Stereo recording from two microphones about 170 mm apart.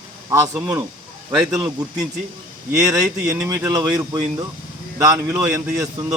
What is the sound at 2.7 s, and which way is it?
Speech, 20° right (ahead or behind).